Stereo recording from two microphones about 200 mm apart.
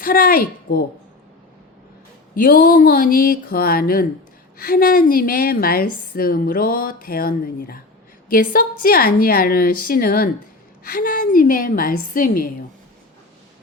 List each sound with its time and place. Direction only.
0.0 s a woman's voice: 45° left (ahead or behind)
2.3 s a woman's voice: 45° left (ahead or behind)